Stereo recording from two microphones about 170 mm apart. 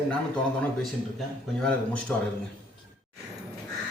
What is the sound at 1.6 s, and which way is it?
Speech, 5° left (ahead or behind).